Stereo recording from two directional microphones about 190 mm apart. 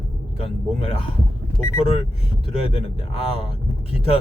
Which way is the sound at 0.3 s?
30° left (ahead or behind).